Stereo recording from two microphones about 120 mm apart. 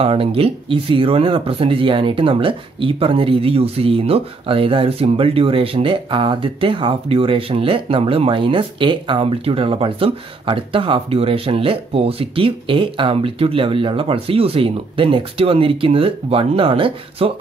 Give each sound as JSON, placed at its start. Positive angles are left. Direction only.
{"t": 0.0, "sound": "speech", "side_deg": -50}